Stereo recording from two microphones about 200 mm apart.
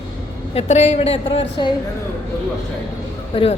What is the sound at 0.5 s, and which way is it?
A woman's voice, 30° left (ahead or behind).